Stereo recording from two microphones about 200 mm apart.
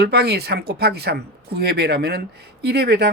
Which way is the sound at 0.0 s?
55° right (ahead or behind).